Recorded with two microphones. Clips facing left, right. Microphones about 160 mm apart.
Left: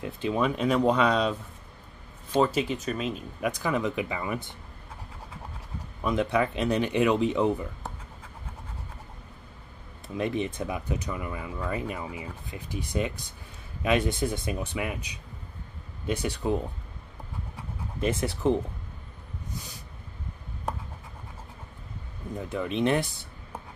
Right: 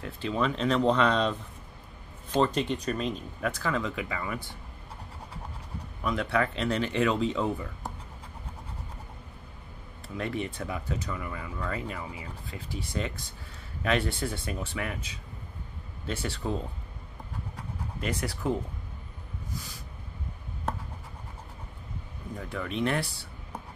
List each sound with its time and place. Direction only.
0.0 s speech: 15° left (ahead or behind)
2.3 s speech: 5° left (ahead or behind)
3.3 s speech: 15° left (ahead or behind)
6.0 s speech: 20° left (ahead or behind)
10.0 s speech: 20° left (ahead or behind)
18.0 s speech: 20° left (ahead or behind)
22.4 s speech: 20° left (ahead or behind)